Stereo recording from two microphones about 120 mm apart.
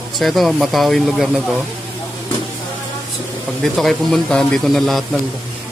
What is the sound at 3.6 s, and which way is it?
Speech, 5° left (ahead or behind).